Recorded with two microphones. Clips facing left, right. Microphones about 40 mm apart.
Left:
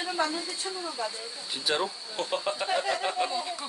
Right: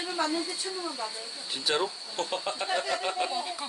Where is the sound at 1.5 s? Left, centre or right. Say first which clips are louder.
Even; centre.